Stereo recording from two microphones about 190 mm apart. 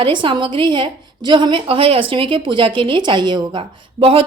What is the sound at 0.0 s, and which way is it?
A woman's voice, 25° right (ahead or behind).